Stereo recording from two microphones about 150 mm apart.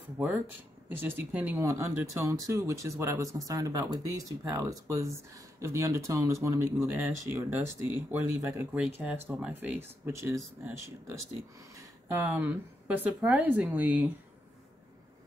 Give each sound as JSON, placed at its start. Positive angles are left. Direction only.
{"t": 0.2, "sound": "speech", "side_deg": -10}